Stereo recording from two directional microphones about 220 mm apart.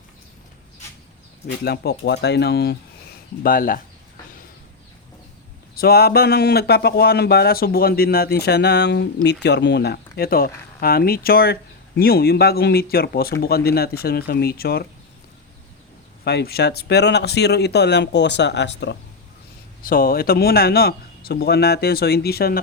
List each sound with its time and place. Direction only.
1.6 s speech: 45° left (ahead or behind)
5.7 s speech: 45° left (ahead or behind)
16.2 s speech: 45° left (ahead or behind)
19.8 s speech: 40° left (ahead or behind)